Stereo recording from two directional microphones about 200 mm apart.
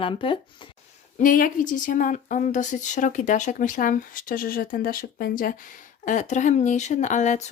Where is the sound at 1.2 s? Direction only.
45° left (ahead or behind).